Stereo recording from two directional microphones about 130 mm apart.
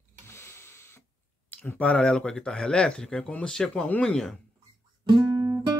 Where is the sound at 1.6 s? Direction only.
10° left (ahead or behind).